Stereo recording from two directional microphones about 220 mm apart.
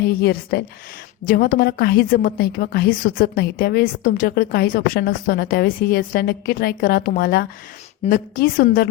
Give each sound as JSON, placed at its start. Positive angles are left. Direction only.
{"t": 0.0, "sound": "a woman's voice", "side_deg": 45}